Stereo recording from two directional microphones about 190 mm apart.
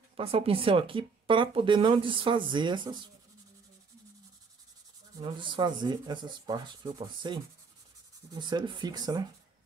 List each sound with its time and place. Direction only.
0.1 s speech: 30° right (ahead or behind)
5.2 s speech: 25° right (ahead or behind)